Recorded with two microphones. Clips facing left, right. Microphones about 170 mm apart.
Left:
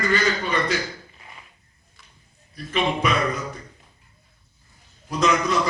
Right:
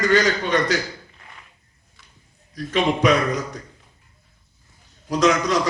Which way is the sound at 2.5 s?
90° right.